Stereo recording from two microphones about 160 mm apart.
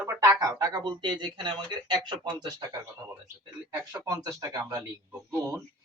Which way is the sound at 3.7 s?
15° right (ahead or behind).